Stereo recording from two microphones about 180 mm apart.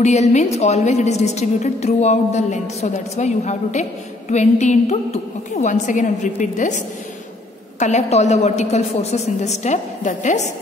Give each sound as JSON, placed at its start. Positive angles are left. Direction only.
{"t": 0.0, "sound": "a woman's voice", "side_deg": 40}
{"t": 7.8, "sound": "a woman's voice", "side_deg": 40}